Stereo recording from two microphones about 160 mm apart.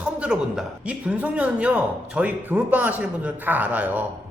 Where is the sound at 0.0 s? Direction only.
5° right (ahead or behind).